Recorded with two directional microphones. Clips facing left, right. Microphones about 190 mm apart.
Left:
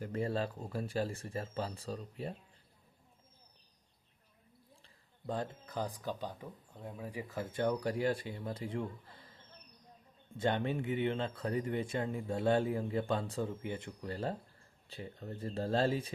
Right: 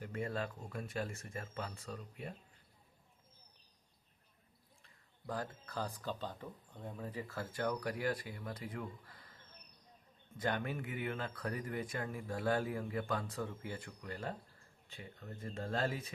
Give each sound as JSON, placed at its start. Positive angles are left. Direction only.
{"t": 0.0, "sound": "speech", "side_deg": 35}
{"t": 4.8, "sound": "speech", "side_deg": 25}